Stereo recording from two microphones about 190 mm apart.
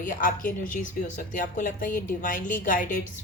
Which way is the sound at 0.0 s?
45° left (ahead or behind).